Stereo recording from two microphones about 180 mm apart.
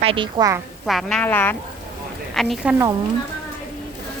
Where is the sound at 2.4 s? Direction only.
Centre (ahead or behind).